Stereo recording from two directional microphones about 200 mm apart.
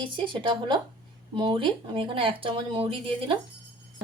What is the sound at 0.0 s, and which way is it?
Speech, 25° right (ahead or behind).